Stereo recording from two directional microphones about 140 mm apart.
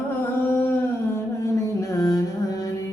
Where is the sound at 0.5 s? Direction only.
15° left (ahead or behind).